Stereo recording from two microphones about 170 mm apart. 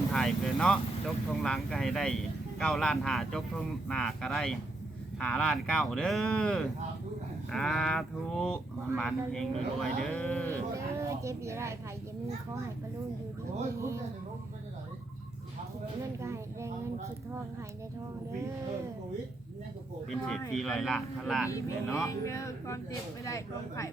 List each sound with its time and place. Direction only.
0.1 s speech: 5° left (ahead or behind)
10.5 s speech: 15° right (ahead or behind)
13.7 s speech: 15° right (ahead or behind)
16.2 s speech: 15° right (ahead or behind)
20.1 s speech: 5° left (ahead or behind)
21.4 s speech: 15° left (ahead or behind)